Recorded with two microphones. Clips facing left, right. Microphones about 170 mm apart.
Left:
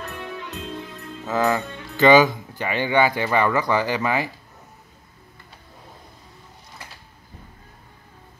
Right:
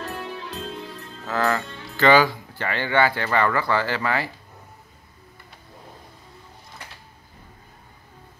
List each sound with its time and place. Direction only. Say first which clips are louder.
0.0 s music: right 1 dB; 30° right (ahead or behind)
1.2 s speech: left 2 dB; 15° left (ahead or behind)